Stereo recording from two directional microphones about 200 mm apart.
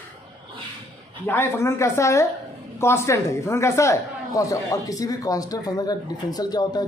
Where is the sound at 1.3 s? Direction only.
10° left (ahead or behind).